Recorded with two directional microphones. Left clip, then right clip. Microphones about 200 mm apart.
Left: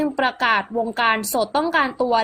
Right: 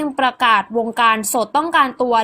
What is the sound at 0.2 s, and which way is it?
A woman's voice, 25° right (ahead or behind).